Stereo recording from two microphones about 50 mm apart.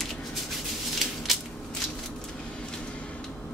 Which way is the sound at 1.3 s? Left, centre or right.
Centre.